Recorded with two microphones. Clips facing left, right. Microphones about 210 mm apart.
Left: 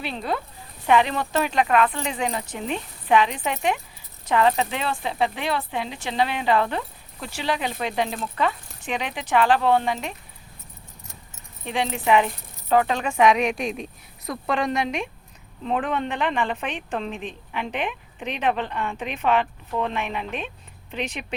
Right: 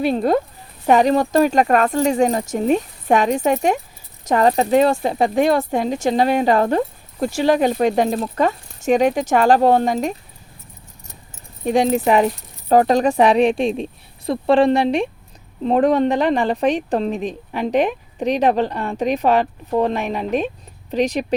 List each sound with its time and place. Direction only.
0.0 s speech: 45° right (ahead or behind)
11.6 s a woman's voice: 45° right (ahead or behind)